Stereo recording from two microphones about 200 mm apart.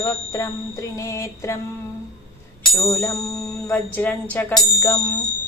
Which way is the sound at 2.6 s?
15° left (ahead or behind).